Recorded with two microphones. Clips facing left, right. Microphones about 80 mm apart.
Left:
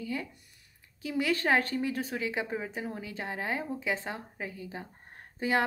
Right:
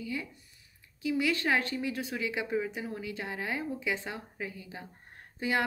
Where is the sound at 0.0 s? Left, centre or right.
Left.